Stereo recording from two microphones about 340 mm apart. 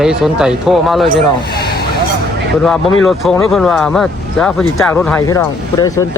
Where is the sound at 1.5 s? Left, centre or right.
Left.